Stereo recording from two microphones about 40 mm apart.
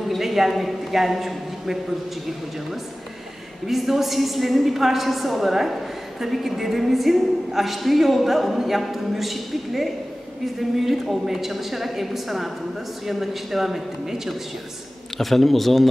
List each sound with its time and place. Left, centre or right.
0.2 s a man's voice: centre
3.6 s a woman's voice: centre
15.1 s a woman's voice: centre